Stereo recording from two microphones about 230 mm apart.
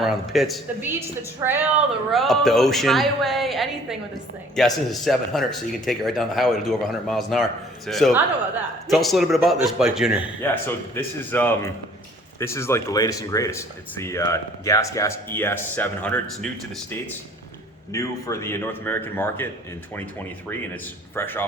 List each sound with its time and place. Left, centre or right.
0.0 s a woman's voice: centre
10.4 s speech: centre
17.9 s speech: centre
21.2 s speech: centre